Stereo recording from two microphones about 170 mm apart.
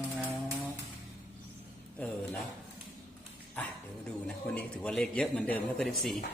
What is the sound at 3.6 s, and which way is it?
Dog, 10° left (ahead or behind).